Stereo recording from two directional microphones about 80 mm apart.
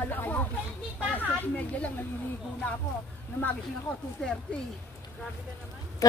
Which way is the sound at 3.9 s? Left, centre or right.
Centre.